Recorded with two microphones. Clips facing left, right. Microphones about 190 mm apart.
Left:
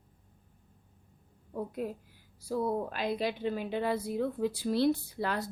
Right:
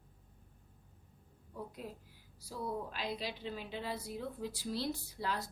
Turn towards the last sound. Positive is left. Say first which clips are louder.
# left 6 dB
turn(degrees=60)  # may be behind; listen again after turning